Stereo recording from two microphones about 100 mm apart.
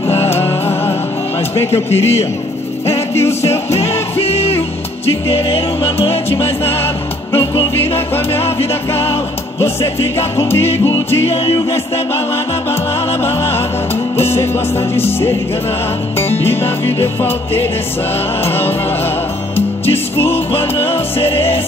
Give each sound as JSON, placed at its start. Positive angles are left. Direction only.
{"t": 0.3, "sound": "music", "side_deg": 25}
{"t": 1.9, "sound": "a man's voice", "side_deg": 90}
{"t": 3.2, "sound": "music", "side_deg": 25}
{"t": 4.2, "sound": "music", "side_deg": 80}
{"t": 7.3, "sound": "music", "side_deg": 70}
{"t": 14.1, "sound": "music", "side_deg": 25}
{"t": 20.2, "sound": "music", "side_deg": 75}